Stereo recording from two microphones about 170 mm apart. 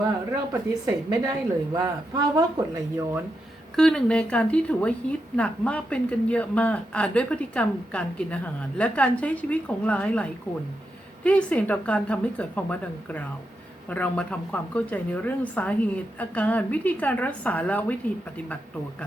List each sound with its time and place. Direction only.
0.9 s a woman's voice: 20° right (ahead or behind)
3.8 s a woman's voice: 5° left (ahead or behind)